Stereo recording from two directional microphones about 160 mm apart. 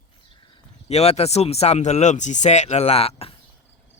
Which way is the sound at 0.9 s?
40° left (ahead or behind).